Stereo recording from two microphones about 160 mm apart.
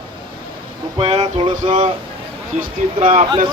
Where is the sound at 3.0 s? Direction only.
50° right (ahead or behind).